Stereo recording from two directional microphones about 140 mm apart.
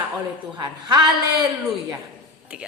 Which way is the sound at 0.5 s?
30° right (ahead or behind).